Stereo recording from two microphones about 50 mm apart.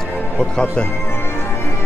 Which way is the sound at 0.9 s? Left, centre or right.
Left.